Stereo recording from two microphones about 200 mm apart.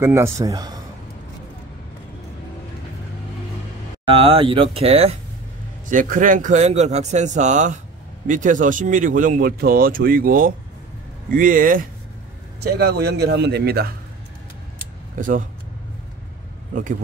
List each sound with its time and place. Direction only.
0.0 s a man's voice: 15° right (ahead or behind)
4.1 s speech: 25° right (ahead or behind)
5.9 s a man's voice: 40° right (ahead or behind)
12.5 s a man's voice: 55° right (ahead or behind)
15.1 s speech: 40° right (ahead or behind)